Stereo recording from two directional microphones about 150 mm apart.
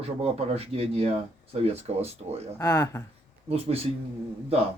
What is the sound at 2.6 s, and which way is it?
Speech, 25° left (ahead or behind).